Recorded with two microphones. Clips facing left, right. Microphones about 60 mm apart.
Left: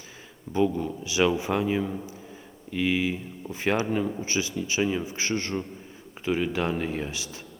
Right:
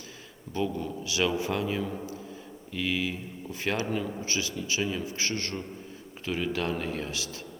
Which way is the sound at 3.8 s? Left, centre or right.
Centre.